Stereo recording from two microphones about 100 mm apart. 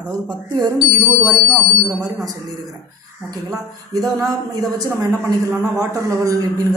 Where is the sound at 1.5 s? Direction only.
35° right (ahead or behind).